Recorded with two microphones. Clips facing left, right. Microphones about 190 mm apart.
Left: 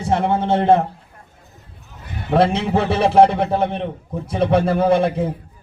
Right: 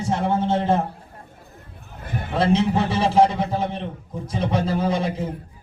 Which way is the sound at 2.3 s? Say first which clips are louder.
Left 3 dB; 60° left (ahead or behind).